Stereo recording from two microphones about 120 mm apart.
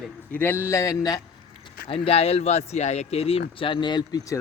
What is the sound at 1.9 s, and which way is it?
Speech, 55° left (ahead or behind).